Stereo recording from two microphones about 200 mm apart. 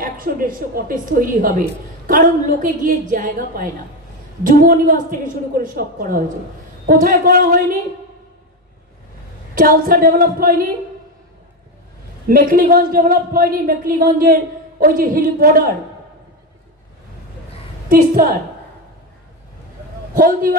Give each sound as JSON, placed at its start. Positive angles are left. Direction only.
{"t": 0.0, "sound": "a woman's voice", "side_deg": -45}
{"t": 9.6, "sound": "a woman's voice", "side_deg": -45}
{"t": 12.3, "sound": "a woman's voice", "side_deg": -45}
{"t": 17.8, "sound": "a woman's voice", "side_deg": -45}
{"t": 20.2, "sound": "a woman's voice", "side_deg": -45}